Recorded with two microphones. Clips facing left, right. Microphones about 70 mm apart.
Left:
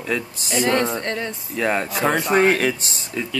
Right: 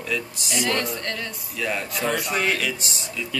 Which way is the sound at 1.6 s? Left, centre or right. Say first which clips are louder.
Left 6 dB; left.